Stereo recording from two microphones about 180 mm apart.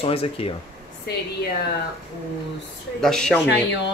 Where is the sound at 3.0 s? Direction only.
5° left (ahead or behind).